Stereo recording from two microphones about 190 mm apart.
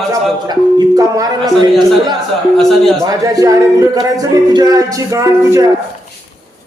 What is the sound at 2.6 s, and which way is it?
Speech, centre (ahead or behind).